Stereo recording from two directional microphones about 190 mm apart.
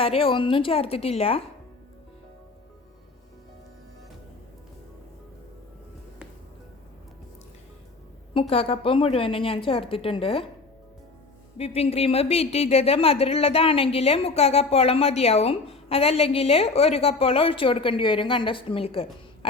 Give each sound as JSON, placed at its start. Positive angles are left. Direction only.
{"t": 0.0, "sound": "a woman's voice", "side_deg": 30}
{"t": 8.3, "sound": "a woman's voice", "side_deg": 30}
{"t": 11.5, "sound": "a woman's voice", "side_deg": 30}